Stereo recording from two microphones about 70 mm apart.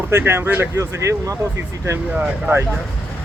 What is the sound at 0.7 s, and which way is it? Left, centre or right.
Speech, right.